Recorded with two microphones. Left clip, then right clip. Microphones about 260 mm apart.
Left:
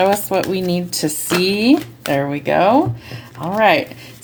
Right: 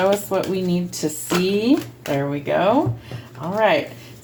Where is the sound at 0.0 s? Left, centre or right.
Left.